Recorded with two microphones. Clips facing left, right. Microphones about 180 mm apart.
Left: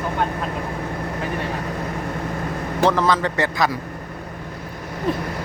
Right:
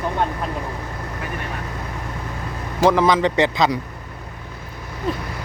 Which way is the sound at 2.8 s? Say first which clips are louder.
Right 3 dB; 15° right (ahead or behind).